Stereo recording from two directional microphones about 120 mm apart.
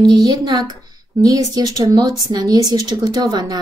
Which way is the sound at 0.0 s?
30° right (ahead or behind).